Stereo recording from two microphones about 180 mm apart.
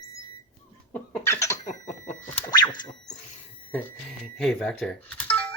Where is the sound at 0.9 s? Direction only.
10° left (ahead or behind).